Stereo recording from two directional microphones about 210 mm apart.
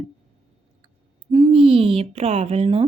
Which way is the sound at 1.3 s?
25° right (ahead or behind).